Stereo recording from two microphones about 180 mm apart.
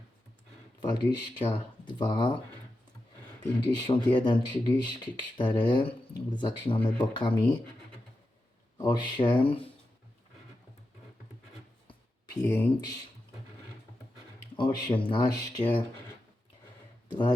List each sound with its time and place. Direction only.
0.8 s speech: 25° left (ahead or behind)
3.6 s speech: 25° left (ahead or behind)
8.8 s speech: 25° left (ahead or behind)
11.9 s a sound: 20° left (ahead or behind)
14.5 s speech: 25° left (ahead or behind)
17.1 s speech: 25° left (ahead or behind)